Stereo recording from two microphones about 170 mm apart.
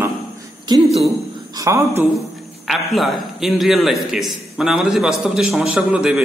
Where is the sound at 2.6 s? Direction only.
Centre (ahead or behind).